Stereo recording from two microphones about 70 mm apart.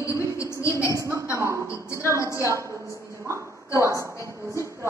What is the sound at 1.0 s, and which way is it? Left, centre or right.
Speech, right.